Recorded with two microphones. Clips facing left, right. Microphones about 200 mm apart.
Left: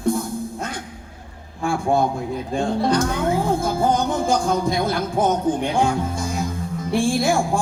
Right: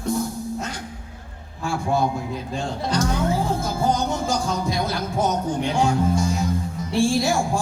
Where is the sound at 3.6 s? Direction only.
55° left (ahead or behind).